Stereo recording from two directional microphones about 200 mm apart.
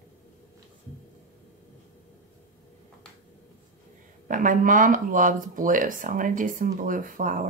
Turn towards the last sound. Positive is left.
turn(degrees=-40)  # may be behind; listen again after turning